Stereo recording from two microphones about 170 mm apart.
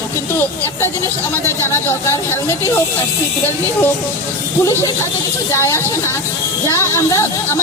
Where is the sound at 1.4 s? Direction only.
15° left (ahead or behind).